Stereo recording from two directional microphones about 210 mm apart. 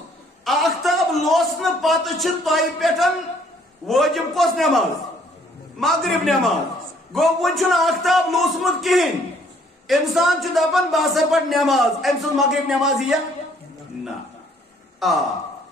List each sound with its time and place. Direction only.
0.5 s a man's voice: centre (ahead or behind)
15.0 s speech: centre (ahead or behind)